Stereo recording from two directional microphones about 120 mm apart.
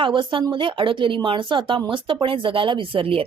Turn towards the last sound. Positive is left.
turn(degrees=-50)  # may be behind; listen again after turning